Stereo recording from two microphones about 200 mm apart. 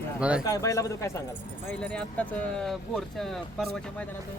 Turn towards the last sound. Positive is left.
turn(degrees=0)  # may be behind; listen again after turning